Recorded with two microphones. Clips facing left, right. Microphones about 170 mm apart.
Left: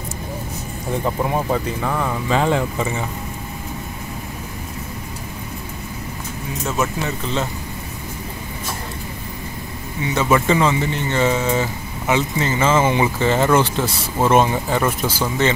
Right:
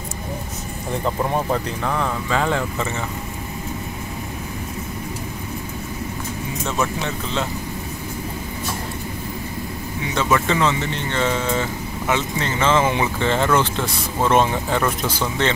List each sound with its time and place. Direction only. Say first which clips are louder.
1.0 s speech: even; 5° left (ahead or behind)
2.2 s speech: left 6 dB; 20° left (ahead or behind)
6.6 s speech: left 2 dB; 5° left (ahead or behind)
10.1 s speech: left 3 dB; 10° left (ahead or behind)